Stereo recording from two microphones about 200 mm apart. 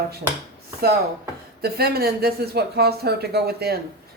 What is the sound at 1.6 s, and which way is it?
Speech, 50° right (ahead or behind).